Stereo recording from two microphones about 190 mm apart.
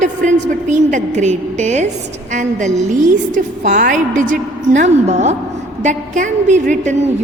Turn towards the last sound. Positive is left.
turn(degrees=-40)  # may be behind; listen again after turning